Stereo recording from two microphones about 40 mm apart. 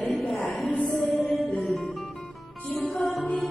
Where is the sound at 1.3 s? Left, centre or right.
Left.